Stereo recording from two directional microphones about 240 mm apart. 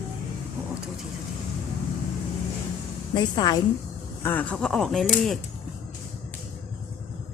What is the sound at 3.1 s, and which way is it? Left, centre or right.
A woman's voice, centre.